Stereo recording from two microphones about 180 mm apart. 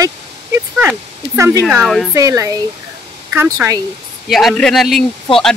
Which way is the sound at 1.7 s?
Centre (ahead or behind).